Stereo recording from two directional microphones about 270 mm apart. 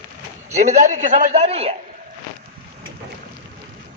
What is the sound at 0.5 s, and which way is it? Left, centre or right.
A man's voice, right.